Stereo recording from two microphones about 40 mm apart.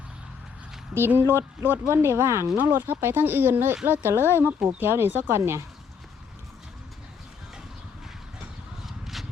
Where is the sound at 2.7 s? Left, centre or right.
Right.